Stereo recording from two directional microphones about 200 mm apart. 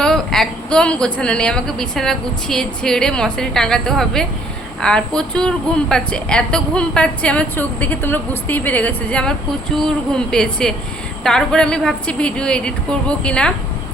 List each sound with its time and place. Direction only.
0.0 s a woman's voice: centre (ahead or behind)